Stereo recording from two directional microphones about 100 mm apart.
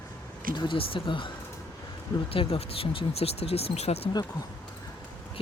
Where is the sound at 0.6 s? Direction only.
60° left (ahead or behind).